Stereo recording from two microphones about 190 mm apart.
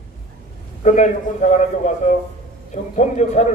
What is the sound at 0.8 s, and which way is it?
A man's voice, 40° left (ahead or behind).